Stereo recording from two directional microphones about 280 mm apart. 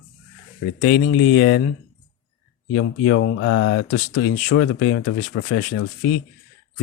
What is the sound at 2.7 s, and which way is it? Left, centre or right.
Speech, left.